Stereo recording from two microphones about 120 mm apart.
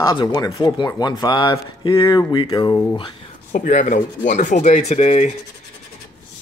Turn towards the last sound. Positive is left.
turn(degrees=70)  # may be behind; listen again after turning